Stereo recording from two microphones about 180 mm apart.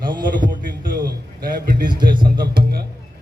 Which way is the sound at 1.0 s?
60° right (ahead or behind).